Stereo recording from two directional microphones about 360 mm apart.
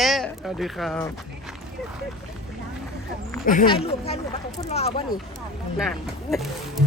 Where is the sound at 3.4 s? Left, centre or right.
Left.